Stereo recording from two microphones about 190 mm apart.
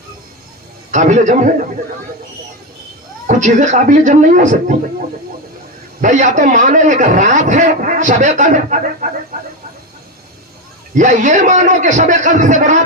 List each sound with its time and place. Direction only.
0.9 s a man's voice: 40° right (ahead or behind)
3.2 s a man's voice: 40° right (ahead or behind)
6.0 s a man's voice: 40° right (ahead or behind)
10.9 s a man's voice: 40° right (ahead or behind)